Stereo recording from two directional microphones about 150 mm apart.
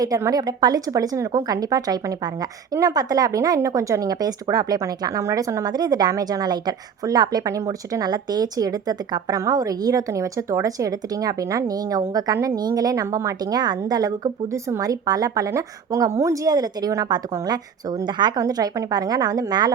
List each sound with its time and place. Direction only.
0.0 s a woman's voice: 25° right (ahead or behind)